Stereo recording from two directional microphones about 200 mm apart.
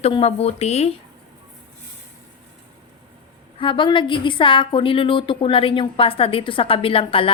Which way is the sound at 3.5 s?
25° left (ahead or behind).